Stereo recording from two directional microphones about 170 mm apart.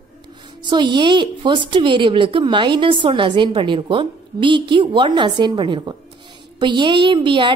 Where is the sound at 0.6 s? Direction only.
25° right (ahead or behind).